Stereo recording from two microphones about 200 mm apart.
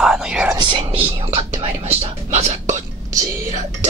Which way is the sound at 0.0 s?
5° right (ahead or behind).